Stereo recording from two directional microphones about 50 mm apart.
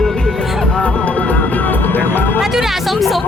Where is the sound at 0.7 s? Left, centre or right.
Left.